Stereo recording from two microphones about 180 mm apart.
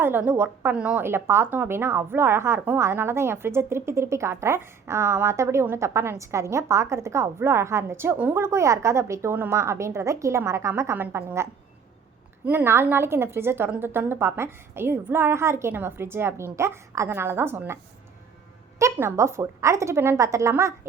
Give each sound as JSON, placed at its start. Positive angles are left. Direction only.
{"t": 0.0, "sound": "a woman's voice", "side_deg": -10}
{"t": 12.5, "sound": "a woman's voice", "side_deg": -15}
{"t": 18.8, "sound": "a woman's voice", "side_deg": -15}